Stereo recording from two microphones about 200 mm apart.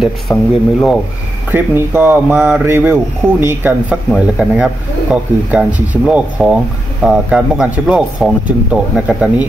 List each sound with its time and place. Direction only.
0.0 s speech: centre (ahead or behind)
1.5 s speech: 10° right (ahead or behind)